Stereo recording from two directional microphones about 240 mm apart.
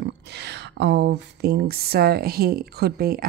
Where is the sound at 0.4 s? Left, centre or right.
Right.